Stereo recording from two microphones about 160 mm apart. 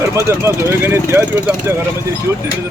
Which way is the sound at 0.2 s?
15° right (ahead or behind).